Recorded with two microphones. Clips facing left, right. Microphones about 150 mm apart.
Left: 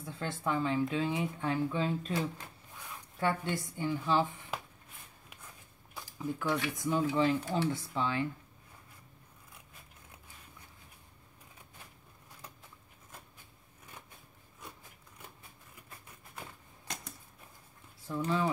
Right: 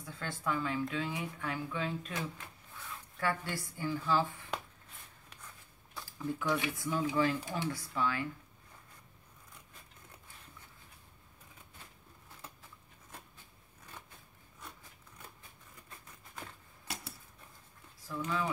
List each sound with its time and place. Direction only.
0.0 s speech: 25° left (ahead or behind)
3.2 s speech: 25° left (ahead or behind)
5.9 s a sound: 15° left (ahead or behind)
6.7 s speech: 20° left (ahead or behind)
16.8 s typewriter: 5° right (ahead or behind)
18.0 s speech: 30° left (ahead or behind)